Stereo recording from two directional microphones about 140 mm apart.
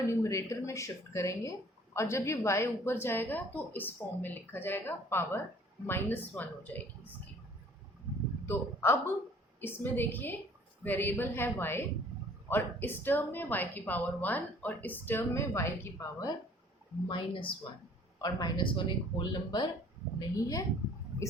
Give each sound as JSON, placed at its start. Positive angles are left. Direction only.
{"t": 0.1, "sound": "a woman's voice", "side_deg": 20}
{"t": 8.4, "sound": "a woman's voice", "side_deg": 15}
{"t": 17.1, "sound": "a man's voice", "side_deg": 35}